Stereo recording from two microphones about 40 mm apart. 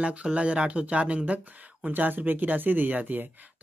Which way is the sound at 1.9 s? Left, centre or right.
Right.